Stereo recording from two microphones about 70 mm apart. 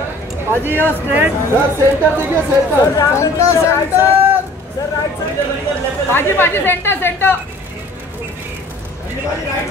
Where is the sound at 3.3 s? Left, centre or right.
Left.